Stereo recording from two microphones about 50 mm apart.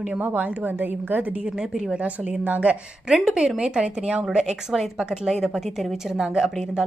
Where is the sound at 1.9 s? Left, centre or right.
Right.